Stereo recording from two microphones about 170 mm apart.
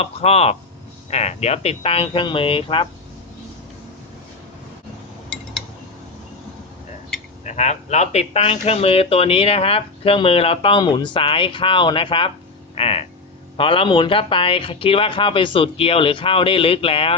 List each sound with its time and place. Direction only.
0.0 s a man's voice: 35° left (ahead or behind)
7.4 s a man's voice: 40° left (ahead or behind)